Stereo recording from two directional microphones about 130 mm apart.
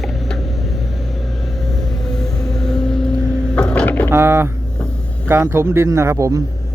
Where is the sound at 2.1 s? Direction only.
5° left (ahead or behind).